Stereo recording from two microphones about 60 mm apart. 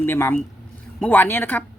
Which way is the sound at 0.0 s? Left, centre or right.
Left.